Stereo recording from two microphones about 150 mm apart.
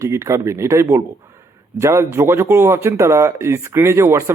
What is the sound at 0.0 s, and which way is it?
Speech, 20° right (ahead or behind).